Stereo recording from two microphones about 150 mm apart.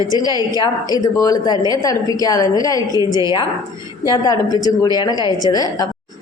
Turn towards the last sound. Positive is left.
turn(degrees=25)  # may be behind; listen again after turning